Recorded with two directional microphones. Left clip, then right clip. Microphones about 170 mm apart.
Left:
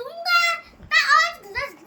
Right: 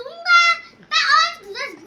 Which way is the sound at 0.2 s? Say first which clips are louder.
Right 6 dB; 35° left (ahead or behind).